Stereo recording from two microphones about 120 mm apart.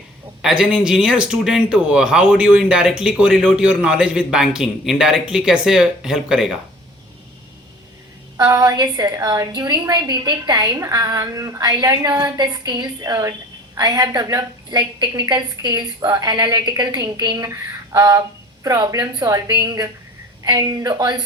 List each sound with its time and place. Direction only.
0.4 s speech: 10° right (ahead or behind)
8.4 s a woman's voice: 35° right (ahead or behind)